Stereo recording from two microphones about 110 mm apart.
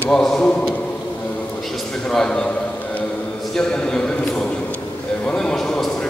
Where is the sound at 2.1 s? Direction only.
5° left (ahead or behind).